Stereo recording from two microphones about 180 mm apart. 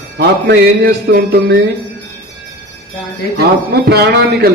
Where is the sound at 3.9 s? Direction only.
65° right (ahead or behind).